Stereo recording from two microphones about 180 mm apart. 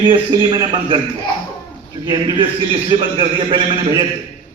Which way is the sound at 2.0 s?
25° right (ahead or behind).